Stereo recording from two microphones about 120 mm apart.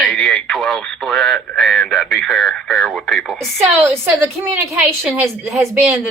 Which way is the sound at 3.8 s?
20° right (ahead or behind).